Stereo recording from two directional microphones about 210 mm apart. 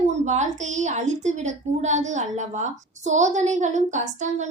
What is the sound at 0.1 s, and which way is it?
Speech, 35° right (ahead or behind).